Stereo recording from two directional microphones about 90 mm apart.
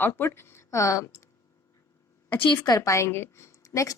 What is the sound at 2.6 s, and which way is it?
A woman's voice, 40° left (ahead or behind).